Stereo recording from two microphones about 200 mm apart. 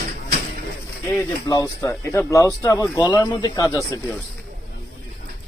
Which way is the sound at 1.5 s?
15° left (ahead or behind).